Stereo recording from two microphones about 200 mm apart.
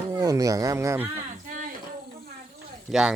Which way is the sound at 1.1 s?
40° right (ahead or behind).